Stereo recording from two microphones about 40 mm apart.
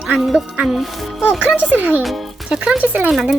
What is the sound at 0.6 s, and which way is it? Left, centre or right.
Speech, centre.